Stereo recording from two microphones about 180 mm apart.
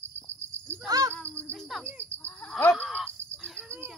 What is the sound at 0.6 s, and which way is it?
Cricket, 15° right (ahead or behind).